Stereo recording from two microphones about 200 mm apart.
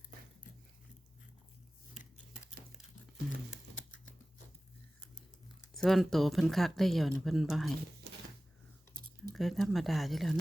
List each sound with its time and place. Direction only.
5.7 s speech: centre (ahead or behind)
8.1 s a sound: 55° right (ahead or behind)
9.3 s speech: centre (ahead or behind)